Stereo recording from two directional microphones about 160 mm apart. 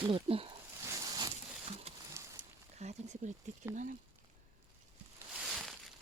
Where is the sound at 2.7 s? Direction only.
45° right (ahead or behind).